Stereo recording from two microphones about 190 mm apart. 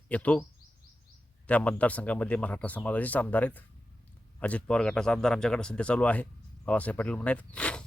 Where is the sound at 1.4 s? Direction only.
5° left (ahead or behind).